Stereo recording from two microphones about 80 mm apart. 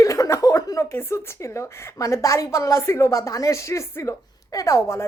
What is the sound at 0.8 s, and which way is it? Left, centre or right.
A woman's voice, left.